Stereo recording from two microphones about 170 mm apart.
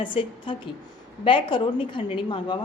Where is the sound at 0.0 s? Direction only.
30° left (ahead or behind).